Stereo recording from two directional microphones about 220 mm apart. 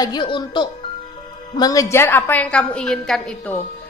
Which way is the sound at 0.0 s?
20° left (ahead or behind).